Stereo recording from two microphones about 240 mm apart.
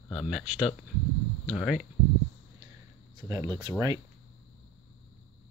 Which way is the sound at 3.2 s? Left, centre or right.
Centre.